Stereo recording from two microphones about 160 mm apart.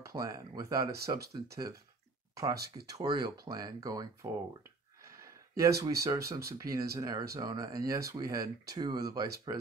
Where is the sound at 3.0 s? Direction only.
25° right (ahead or behind).